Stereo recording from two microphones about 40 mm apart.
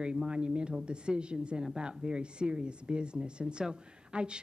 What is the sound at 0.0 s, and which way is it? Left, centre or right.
Speech, right.